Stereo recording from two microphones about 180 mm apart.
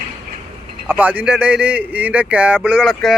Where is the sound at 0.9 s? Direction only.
10° right (ahead or behind).